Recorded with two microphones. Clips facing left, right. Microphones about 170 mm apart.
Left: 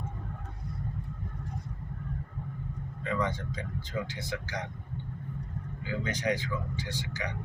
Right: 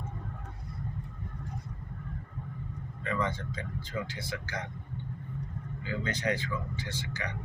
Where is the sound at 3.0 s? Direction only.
15° left (ahead or behind).